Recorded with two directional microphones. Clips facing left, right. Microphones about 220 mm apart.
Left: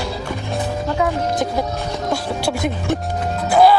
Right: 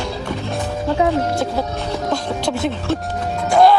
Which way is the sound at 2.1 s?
10° left (ahead or behind).